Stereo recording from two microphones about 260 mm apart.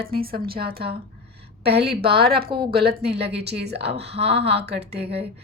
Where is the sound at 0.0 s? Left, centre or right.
Right.